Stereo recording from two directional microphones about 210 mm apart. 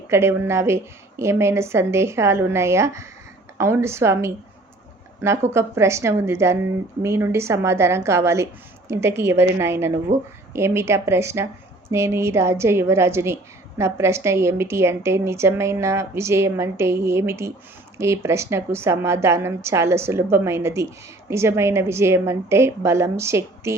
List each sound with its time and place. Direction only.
0.1 s a woman's voice: 10° right (ahead or behind)
5.5 s a woman's voice: 10° right (ahead or behind)